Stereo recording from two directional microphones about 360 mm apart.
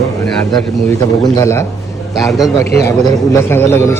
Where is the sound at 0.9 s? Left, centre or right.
Centre.